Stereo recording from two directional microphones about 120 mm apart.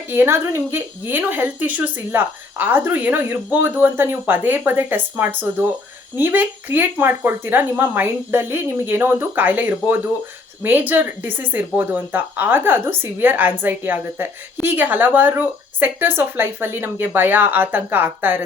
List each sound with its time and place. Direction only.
0.1 s speech: 20° right (ahead or behind)